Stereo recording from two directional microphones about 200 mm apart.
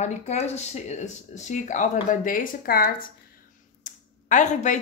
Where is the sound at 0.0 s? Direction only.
35° left (ahead or behind).